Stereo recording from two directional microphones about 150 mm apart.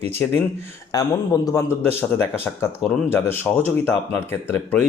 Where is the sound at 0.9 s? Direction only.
25° left (ahead or behind).